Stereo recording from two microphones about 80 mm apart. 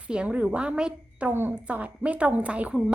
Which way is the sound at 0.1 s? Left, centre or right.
Centre.